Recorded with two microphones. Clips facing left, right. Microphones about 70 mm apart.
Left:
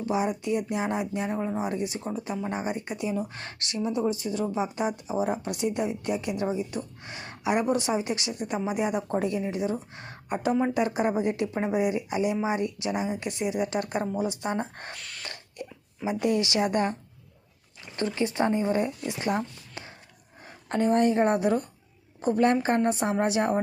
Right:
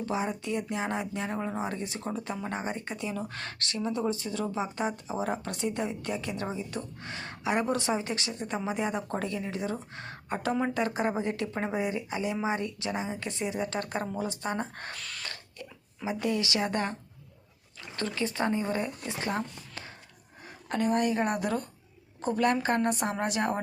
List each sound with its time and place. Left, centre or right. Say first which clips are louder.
0.0 s speech: left 4 dB; centre
9.0 s speech: left 5 dB; centre
9.6 s speech: left 4 dB; centre; by 14.9 s left
14.9 s speech: even; centre
16.2 s speech: left 4 dB; left
17.9 s speech: left 4 dB; left
20.7 s a woman's voice: left 4 dB; left